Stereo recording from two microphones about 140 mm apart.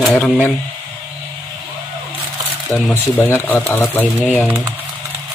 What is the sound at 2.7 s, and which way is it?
Speech, 15° left (ahead or behind).